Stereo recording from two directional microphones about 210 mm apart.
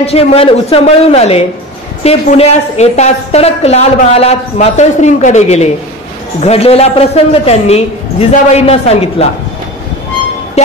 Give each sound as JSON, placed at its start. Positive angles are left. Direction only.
{"t": 0.0, "sound": "a man's voice", "side_deg": 30}